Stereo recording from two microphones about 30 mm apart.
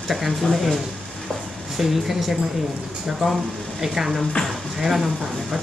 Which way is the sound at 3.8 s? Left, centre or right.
Centre.